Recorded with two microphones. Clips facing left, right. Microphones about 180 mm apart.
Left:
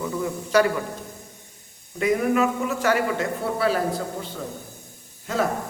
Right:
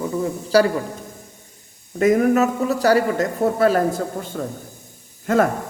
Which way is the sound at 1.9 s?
45° right (ahead or behind).